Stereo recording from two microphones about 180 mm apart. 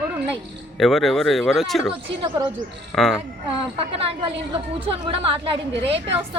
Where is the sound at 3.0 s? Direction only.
Centre (ahead or behind).